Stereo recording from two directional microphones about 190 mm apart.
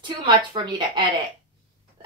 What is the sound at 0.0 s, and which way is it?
Speech, 25° right (ahead or behind).